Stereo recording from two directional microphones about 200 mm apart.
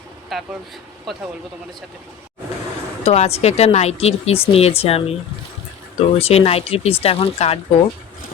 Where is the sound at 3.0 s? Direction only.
30° left (ahead or behind).